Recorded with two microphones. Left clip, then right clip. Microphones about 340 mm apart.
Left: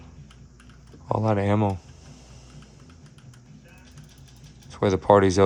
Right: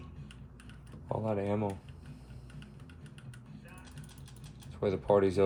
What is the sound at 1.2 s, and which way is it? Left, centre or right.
Speech, left.